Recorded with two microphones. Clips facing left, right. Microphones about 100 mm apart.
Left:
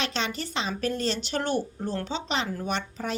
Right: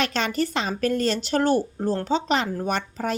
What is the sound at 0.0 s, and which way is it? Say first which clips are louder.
A woman's voice: right 6 dB; 50° right (ahead or behind).